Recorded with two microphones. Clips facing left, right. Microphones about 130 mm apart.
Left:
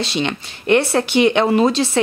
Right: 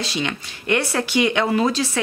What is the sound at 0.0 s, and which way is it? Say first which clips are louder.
A woman's voice: left 4 dB; 25° left (ahead or behind).